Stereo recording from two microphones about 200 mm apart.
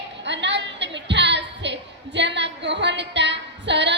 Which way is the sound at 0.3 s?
60° right (ahead or behind).